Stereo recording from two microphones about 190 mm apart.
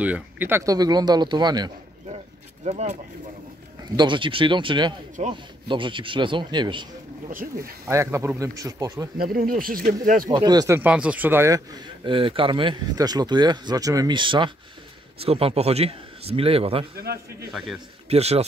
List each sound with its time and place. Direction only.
0.0 s a man's voice: 10° right (ahead or behind)
2.6 s a man's voice: 35° right (ahead or behind)
3.9 s a man's voice: 25° right (ahead or behind)
9.2 s speech: 50° right (ahead or behind)
10.3 s a man's voice: 20° right (ahead or behind)
16.9 s a man's voice: 55° right (ahead or behind)
17.5 s a man's voice: centre (ahead or behind)
18.0 s a man's voice: 35° right (ahead or behind)